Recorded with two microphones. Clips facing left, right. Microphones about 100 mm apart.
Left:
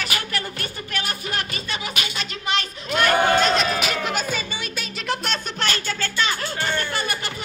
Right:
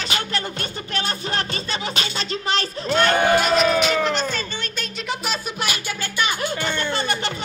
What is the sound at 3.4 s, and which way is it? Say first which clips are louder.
Music: right 3 dB; 5° right (ahead or behind).